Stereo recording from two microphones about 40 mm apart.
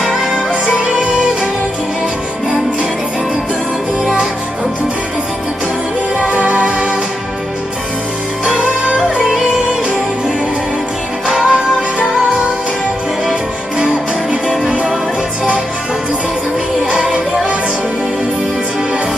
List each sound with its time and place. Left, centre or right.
0.0 s music: centre
0.6 s music: right
6.3 s music: right
11.3 s music: centre
16.9 s music: centre